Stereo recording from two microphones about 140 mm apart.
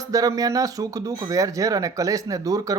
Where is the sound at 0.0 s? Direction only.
25° right (ahead or behind).